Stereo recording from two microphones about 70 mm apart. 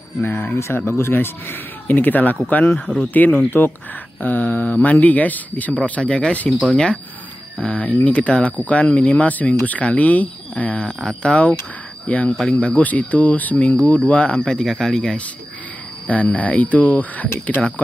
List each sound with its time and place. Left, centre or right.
0.2 s speech: left
10.8 s speech: centre
16.1 s speech: left